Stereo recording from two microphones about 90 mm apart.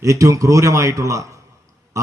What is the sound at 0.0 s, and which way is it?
A man's voice, 35° right (ahead or behind).